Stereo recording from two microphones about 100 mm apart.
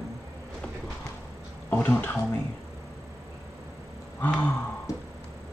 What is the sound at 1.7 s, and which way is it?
Speech, 20° left (ahead or behind).